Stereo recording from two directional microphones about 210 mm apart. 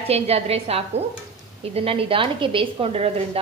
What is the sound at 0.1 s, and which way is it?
A woman's voice, 30° right (ahead or behind).